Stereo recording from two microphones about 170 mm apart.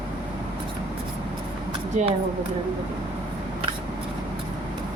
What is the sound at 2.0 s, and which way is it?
Speech, 45° right (ahead or behind).